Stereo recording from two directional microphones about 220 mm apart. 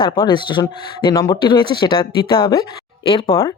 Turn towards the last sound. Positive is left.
turn(degrees=25)  # may be behind; listen again after turning